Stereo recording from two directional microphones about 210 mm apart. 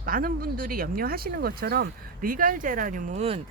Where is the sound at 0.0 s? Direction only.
45° right (ahead or behind).